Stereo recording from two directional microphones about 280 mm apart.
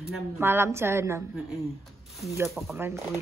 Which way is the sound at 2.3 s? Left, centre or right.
Centre.